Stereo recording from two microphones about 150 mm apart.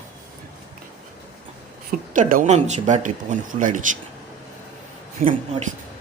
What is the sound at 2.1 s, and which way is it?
Speech, 60° right (ahead or behind).